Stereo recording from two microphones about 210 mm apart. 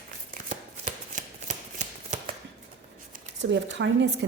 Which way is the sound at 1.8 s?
35° right (ahead or behind).